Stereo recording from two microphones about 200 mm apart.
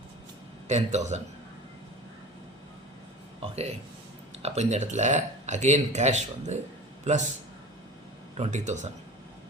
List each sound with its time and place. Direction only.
0.7 s speech: 35° right (ahead or behind)
4.4 s a man's voice: 35° right (ahead or behind)
8.4 s speech: 35° right (ahead or behind)